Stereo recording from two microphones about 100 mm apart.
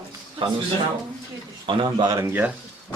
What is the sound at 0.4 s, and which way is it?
Speech, 60° right (ahead or behind).